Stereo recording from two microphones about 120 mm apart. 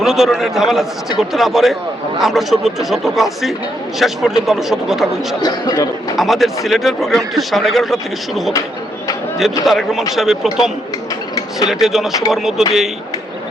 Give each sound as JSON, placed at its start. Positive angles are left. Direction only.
{"t": 0.0, "sound": "a man's voice", "side_deg": 0}
{"t": 5.4, "sound": "speech", "side_deg": 35}
{"t": 6.1, "sound": "a man's voice", "side_deg": 0}
{"t": 9.4, "sound": "a man's voice", "side_deg": 0}
{"t": 11.7, "sound": "a man's voice", "side_deg": -5}